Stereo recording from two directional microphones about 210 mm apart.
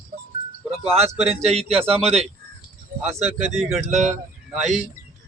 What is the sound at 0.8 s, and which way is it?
Speech, 30° right (ahead or behind).